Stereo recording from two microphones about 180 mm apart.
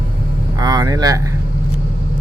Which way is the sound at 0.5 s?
20° right (ahead or behind).